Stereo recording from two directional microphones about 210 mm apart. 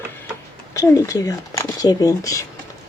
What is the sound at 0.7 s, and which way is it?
Speech, 15° left (ahead or behind).